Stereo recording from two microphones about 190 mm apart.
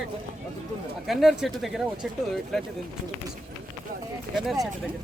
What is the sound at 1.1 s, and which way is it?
Speech, centre (ahead or behind).